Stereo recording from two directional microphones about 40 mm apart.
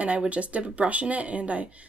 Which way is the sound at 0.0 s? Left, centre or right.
Right.